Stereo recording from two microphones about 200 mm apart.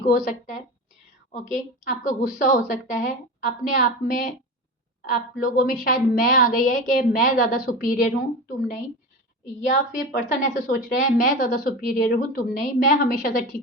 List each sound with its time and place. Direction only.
0.1 s a woman's voice: 40° left (ahead or behind)
1.9 s a woman's voice: 40° left (ahead or behind)